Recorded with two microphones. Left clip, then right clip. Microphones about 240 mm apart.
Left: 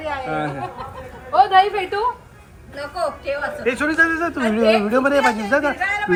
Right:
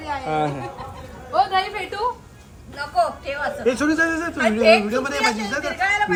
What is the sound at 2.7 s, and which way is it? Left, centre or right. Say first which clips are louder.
A man's voice: right 3 dB; centre.